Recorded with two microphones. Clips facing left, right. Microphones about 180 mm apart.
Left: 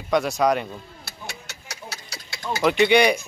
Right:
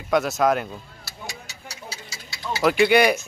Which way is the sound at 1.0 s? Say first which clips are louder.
Even; 65° left (ahead or behind).